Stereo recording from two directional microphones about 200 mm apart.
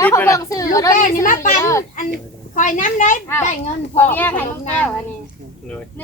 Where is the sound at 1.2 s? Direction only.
40° left (ahead or behind).